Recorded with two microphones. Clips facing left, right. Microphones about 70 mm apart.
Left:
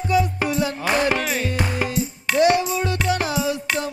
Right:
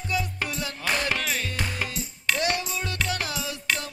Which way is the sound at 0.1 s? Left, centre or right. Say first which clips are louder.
Left 9 dB; centre.